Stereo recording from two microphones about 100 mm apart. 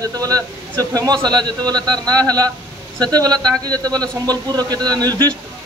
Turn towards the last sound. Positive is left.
turn(degrees=-40)  # may be behind; listen again after turning